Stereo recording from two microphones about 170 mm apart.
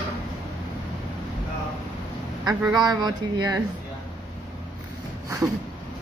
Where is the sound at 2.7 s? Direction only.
25° right (ahead or behind).